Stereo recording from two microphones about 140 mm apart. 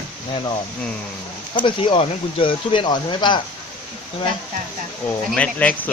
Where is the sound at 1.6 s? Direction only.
35° left (ahead or behind).